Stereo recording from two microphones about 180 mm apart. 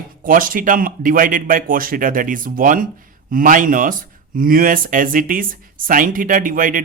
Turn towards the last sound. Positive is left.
turn(degrees=-50)  # may be behind; listen again after turning